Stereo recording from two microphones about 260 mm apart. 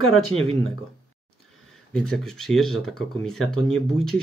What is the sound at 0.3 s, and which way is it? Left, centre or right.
Speech, right.